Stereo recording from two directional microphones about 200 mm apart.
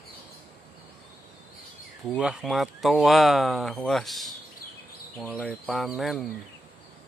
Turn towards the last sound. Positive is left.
turn(degrees=0)  # may be behind; listen again after turning